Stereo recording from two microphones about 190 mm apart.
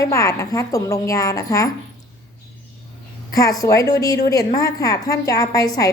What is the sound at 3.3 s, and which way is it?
A woman's voice, 20° left (ahead or behind).